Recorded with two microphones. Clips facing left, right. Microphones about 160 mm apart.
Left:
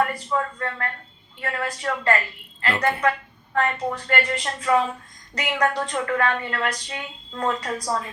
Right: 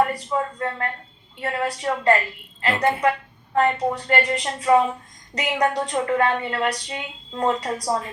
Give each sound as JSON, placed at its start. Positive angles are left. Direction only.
{"t": 0.3, "sound": "a woman's voice", "side_deg": -20}